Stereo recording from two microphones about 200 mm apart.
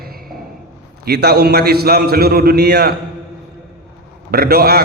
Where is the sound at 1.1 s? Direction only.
55° right (ahead or behind).